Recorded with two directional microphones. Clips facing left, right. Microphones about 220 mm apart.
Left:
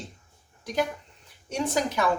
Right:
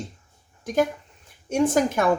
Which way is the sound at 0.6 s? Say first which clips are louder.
Right 5 dB; 50° right (ahead or behind).